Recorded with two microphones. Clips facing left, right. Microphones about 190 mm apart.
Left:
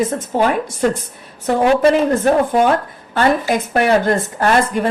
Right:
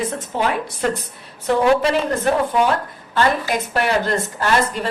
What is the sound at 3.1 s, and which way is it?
A woman's voice, 50° left (ahead or behind).